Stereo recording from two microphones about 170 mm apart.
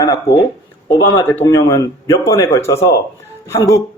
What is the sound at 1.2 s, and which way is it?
Speech, 15° left (ahead or behind).